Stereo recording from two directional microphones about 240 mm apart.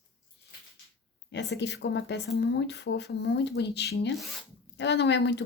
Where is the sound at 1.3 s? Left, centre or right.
Left.